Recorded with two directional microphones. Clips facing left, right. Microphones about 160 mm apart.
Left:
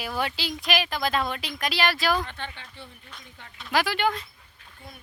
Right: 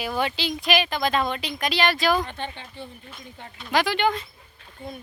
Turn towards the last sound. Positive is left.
turn(degrees=-25)  # may be behind; listen again after turning